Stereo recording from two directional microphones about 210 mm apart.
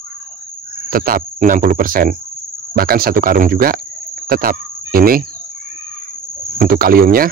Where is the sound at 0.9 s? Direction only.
45° right (ahead or behind).